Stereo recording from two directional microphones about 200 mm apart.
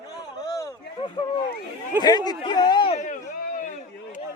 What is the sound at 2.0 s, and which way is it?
Speech, 20° left (ahead or behind).